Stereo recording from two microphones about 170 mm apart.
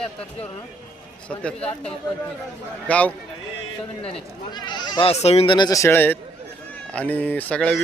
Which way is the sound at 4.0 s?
30° left (ahead or behind).